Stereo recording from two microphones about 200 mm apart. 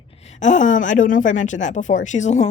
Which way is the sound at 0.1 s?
30° left (ahead or behind).